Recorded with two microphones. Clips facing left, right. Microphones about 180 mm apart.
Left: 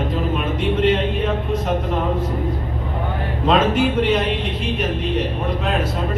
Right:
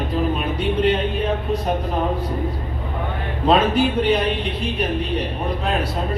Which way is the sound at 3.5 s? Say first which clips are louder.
Even; 35° right (ahead or behind).